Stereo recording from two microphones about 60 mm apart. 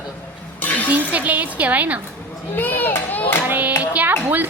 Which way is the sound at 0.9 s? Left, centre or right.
Right.